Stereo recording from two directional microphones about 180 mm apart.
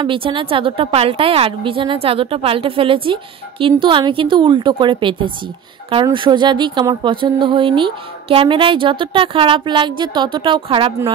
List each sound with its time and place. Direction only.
0.0 s a woman's voice: 30° right (ahead or behind)